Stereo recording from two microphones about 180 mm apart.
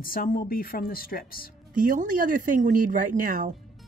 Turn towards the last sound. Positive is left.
turn(degrees=-50)  # may be behind; listen again after turning